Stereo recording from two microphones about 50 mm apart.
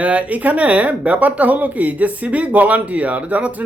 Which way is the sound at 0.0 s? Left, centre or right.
Right.